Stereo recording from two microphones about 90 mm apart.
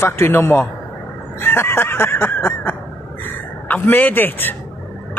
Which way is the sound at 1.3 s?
25° left (ahead or behind).